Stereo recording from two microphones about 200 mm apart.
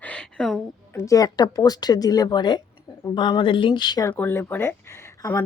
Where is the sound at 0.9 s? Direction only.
15° left (ahead or behind).